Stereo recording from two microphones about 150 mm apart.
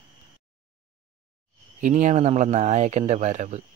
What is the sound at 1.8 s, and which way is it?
Speech, 55° right (ahead or behind).